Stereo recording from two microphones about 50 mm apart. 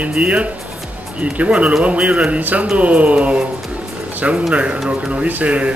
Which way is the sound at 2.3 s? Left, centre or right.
Right.